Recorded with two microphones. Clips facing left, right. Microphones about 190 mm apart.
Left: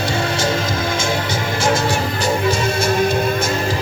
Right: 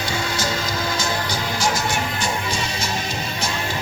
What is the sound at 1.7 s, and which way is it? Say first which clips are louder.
Music: left 6 dB; 35° left (ahead or behind).